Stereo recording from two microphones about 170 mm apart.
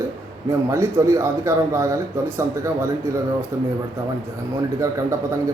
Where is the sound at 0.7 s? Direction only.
15° right (ahead or behind).